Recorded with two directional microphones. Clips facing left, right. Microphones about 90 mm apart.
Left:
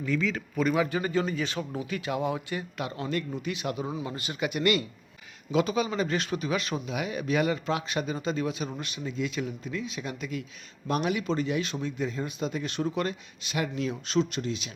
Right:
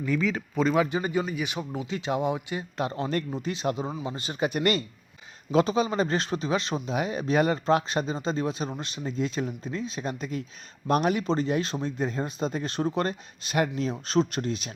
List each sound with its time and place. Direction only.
0.0 s speech: 40° right (ahead or behind)
0.3 s a man's voice: 25° right (ahead or behind)
2.7 s speech: 35° right (ahead or behind)